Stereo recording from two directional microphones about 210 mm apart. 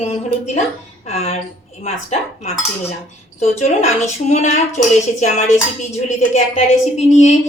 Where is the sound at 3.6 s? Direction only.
35° left (ahead or behind).